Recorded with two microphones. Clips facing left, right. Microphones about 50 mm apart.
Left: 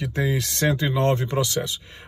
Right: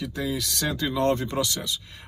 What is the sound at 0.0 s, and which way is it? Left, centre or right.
Speech, left.